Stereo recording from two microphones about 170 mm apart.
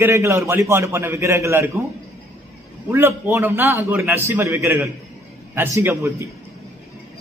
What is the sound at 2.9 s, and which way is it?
A man's voice, 15° right (ahead or behind).